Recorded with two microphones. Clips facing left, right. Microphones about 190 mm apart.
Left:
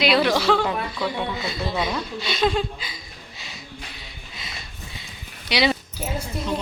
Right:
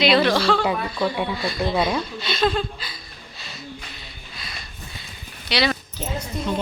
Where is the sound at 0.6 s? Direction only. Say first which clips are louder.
Right 2 dB; 10° right (ahead or behind).